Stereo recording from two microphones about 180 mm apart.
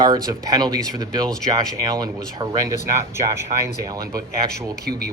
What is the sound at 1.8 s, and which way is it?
Speech, 20° right (ahead or behind).